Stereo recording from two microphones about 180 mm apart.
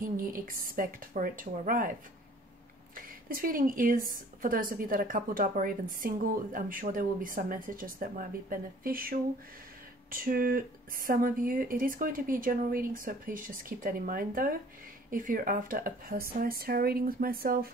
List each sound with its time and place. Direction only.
0.0 s a woman's voice: 50° right (ahead or behind)
3.3 s a woman's voice: 50° right (ahead or behind)